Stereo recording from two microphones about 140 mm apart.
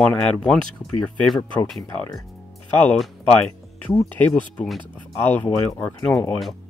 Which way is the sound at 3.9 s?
15° left (ahead or behind).